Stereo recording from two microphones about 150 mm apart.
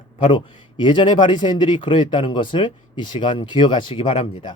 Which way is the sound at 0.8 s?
30° left (ahead or behind).